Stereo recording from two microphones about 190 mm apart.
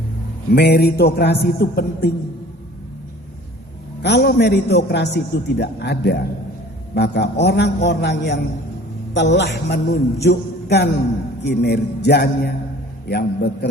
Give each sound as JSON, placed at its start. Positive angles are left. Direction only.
{"t": 0.5, "sound": "a man's voice", "side_deg": 60}
{"t": 4.0, "sound": "a man's voice", "side_deg": 60}
{"t": 10.2, "sound": "music", "side_deg": 60}
{"t": 11.4, "sound": "a man's voice", "side_deg": 60}